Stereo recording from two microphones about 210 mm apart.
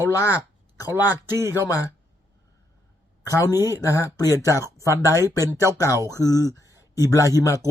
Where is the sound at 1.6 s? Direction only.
15° left (ahead or behind).